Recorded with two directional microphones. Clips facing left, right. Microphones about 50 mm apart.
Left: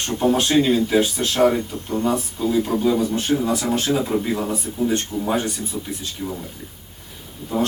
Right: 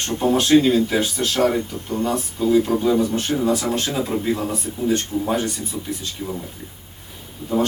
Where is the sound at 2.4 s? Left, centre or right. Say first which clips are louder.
Right 5 dB; centre.